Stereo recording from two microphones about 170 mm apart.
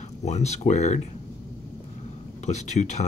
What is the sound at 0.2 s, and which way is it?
Speech, 40° left (ahead or behind).